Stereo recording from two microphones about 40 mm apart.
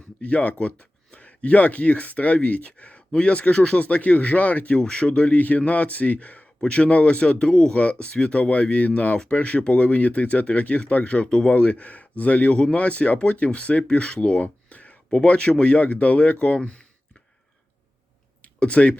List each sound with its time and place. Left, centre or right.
0.2 s speech: left
3.8 s speech: left
4.8 s speech: left
7.8 s speech: left
11.0 s speech: left
11.8 s speech: left
14.4 s speech: left
18.4 s speech: left